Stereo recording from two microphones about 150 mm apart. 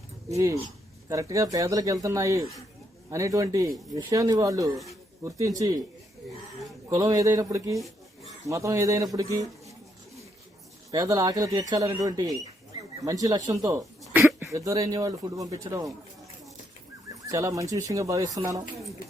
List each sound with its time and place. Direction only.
1.1 s speech: 20° right (ahead or behind)
6.9 s speech: 25° right (ahead or behind)
7.8 s a sound: centre (ahead or behind)
8.4 s a man's voice: 20° right (ahead or behind)
10.9 s speech: 20° right (ahead or behind)
17.3 s speech: 20° right (ahead or behind)